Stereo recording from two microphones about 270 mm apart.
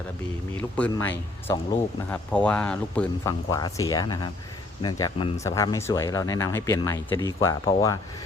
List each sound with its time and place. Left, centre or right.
1.5 s speech: centre